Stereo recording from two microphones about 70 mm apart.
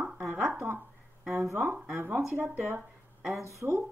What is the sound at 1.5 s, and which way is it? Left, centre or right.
A woman's voice, right.